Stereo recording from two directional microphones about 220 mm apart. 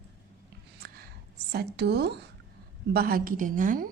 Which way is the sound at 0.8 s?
45° right (ahead or behind).